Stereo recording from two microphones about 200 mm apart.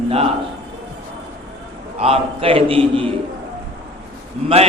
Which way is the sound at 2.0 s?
30° right (ahead or behind).